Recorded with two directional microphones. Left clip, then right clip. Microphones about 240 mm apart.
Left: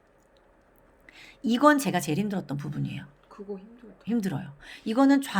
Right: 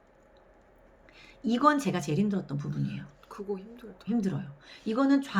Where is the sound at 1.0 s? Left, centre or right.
Left.